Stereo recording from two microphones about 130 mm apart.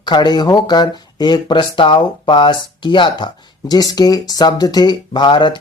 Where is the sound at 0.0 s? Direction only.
35° left (ahead or behind).